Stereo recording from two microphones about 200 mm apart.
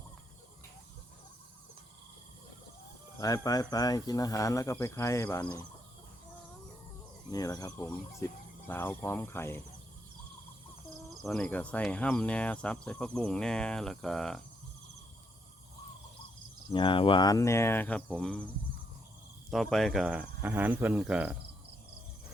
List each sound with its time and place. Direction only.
3.2 s speech: 15° left (ahead or behind)
7.3 s speech: 20° left (ahead or behind)
11.2 s cricket: 5° left (ahead or behind)
16.7 s speech: 25° left (ahead or behind); by 18.4 s 5° left (ahead or behind)
19.5 s cricket: centre (ahead or behind)